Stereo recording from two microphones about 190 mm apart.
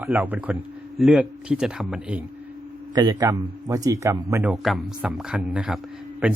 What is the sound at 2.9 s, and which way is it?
A man's voice, 20° right (ahead or behind).